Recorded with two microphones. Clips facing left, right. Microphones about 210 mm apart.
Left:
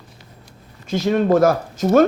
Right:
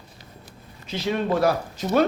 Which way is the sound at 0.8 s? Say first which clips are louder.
Left 7 dB; 45° left (ahead or behind).